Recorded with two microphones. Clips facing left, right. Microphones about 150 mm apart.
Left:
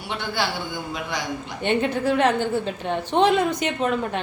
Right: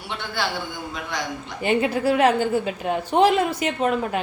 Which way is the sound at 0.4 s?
Centre (ahead or behind).